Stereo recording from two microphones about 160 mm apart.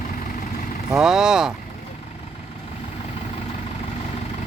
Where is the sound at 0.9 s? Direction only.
5° right (ahead or behind).